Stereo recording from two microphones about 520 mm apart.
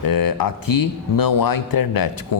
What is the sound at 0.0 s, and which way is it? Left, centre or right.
Speech, left.